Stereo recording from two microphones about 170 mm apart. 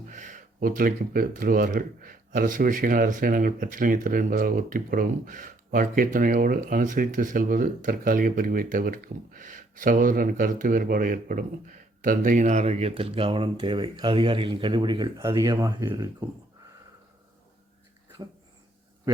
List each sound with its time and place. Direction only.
0.1 s speech: 50° right (ahead or behind); by 16.0 s 20° right (ahead or behind)